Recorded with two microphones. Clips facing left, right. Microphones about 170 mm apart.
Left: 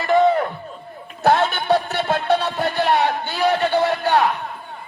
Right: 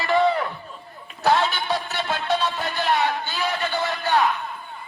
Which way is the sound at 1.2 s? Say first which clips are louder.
Left 3 dB; 55° left (ahead or behind).